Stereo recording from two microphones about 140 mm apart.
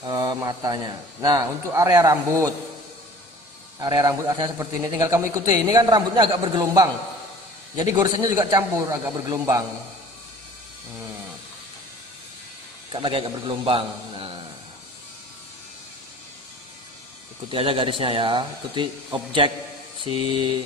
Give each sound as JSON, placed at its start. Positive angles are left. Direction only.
{"t": 0.0, "sound": "speech", "side_deg": -30}
{"t": 3.8, "sound": "speech", "side_deg": -25}
{"t": 8.0, "sound": "speech", "side_deg": -25}
{"t": 12.9, "sound": "a man's voice", "side_deg": -40}
{"t": 17.5, "sound": "speech", "side_deg": -40}
{"t": 20.0, "sound": "speech", "side_deg": -40}